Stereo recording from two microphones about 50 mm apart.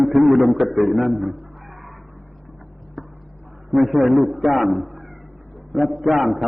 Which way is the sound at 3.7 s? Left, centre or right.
Right.